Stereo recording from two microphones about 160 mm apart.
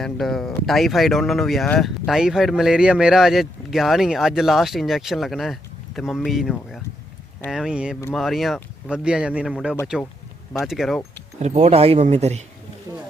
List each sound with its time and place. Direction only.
0.0 s speech: centre (ahead or behind)
11.3 s speech: 45° right (ahead or behind)